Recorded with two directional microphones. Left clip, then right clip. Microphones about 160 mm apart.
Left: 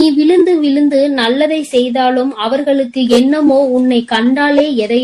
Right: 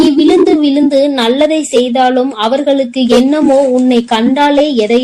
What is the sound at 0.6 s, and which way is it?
Speech, 30° right (ahead or behind).